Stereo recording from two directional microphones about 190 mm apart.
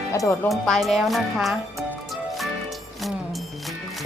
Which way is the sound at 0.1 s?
15° left (ahead or behind).